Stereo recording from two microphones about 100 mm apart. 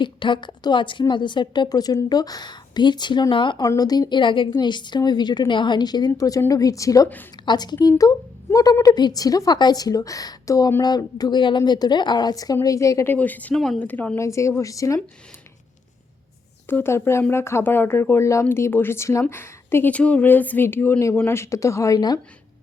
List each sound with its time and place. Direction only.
0.0 s a woman's voice: 55° left (ahead or behind)
3.6 s a woman's voice: 40° left (ahead or behind)
7.4 s a woman's voice: 45° left (ahead or behind)
10.8 s a woman's voice: 45° left (ahead or behind)
13.1 s speech: 15° left (ahead or behind)
14.2 s a woman's voice: 30° left (ahead or behind)
16.6 s speech: 25° left (ahead or behind)
21.9 s a woman's voice: 45° left (ahead or behind)